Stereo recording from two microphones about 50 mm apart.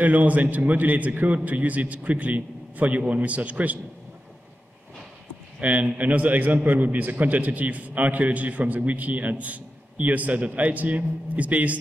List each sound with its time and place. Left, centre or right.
0.0 s a man's voice: right
5.6 s a man's voice: right